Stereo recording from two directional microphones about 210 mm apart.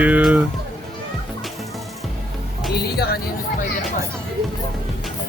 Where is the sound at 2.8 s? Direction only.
50° left (ahead or behind).